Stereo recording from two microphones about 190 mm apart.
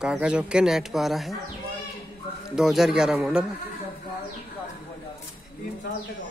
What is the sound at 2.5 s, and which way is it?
Speech, centre (ahead or behind).